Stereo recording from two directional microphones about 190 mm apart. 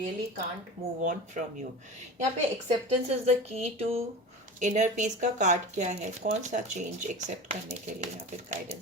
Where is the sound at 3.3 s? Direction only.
35° right (ahead or behind).